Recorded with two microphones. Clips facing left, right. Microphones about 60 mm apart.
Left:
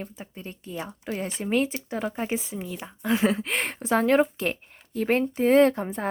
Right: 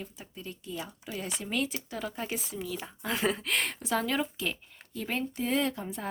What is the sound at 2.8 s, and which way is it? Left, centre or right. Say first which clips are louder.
Speech: left 8 dB; centre.